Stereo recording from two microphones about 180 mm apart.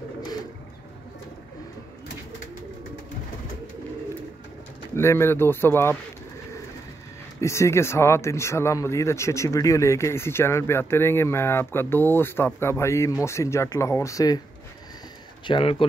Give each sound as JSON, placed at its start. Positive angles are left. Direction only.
{"t": 4.9, "sound": "speech", "side_deg": 15}
{"t": 7.3, "sound": "speech", "side_deg": 15}
{"t": 15.4, "sound": "speech", "side_deg": 30}